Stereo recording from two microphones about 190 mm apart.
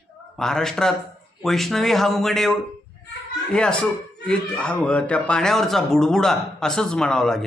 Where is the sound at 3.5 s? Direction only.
5° left (ahead or behind).